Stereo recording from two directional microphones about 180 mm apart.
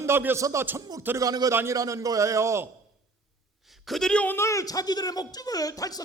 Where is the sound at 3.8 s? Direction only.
Centre (ahead or behind).